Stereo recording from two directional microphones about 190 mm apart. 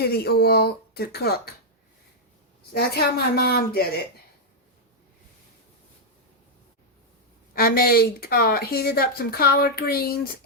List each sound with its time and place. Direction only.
0.0 s speech: 55° left (ahead or behind)
2.7 s speech: 55° left (ahead or behind)
7.5 s speech: 50° left (ahead or behind)